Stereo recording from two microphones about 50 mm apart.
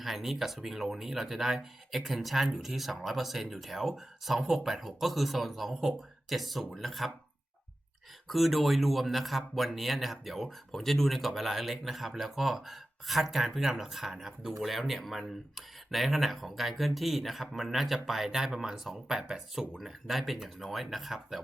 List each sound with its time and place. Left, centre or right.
0.0 s speech: centre
8.3 s speech: centre